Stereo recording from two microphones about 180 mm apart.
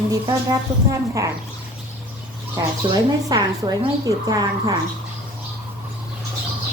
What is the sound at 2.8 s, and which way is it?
A woman's voice, 30° right (ahead or behind).